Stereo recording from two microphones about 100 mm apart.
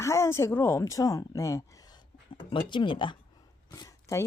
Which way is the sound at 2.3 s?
55° left (ahead or behind).